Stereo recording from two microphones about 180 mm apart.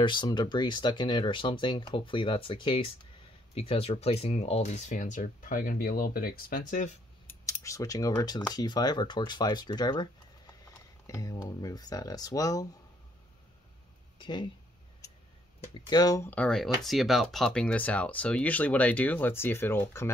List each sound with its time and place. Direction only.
0.0 s speech: 25° left (ahead or behind); by 6.9 s 50° left (ahead or behind)
7.2 s speech: 15° left (ahead or behind)
14.1 s speech: 25° left (ahead or behind)
15.6 s speech: 25° left (ahead or behind)